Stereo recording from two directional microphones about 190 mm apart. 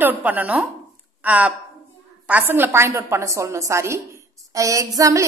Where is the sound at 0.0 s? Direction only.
10° right (ahead or behind).